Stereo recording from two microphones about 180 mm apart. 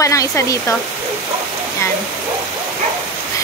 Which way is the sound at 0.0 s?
15° left (ahead or behind).